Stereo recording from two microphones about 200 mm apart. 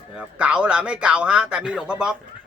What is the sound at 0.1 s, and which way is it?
Speech, 5° right (ahead or behind).